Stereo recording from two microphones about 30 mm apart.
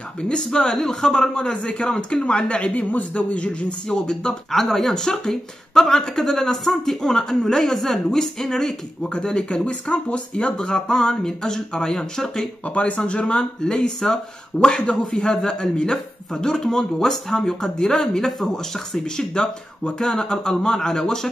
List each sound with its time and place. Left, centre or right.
0.2 s speech: left
3.9 s speech: left
4.5 s speech: centre
7.0 s speech: left
9.1 s speech: left
9.8 s speech: left
10.6 s speech: left
12.6 s speech: left
13.2 s speech: left
15.0 s speech: centre
16.3 s speech: centre
19.0 s speech: left